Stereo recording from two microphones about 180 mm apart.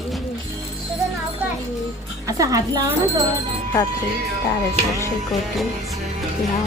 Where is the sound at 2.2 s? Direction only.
20° right (ahead or behind).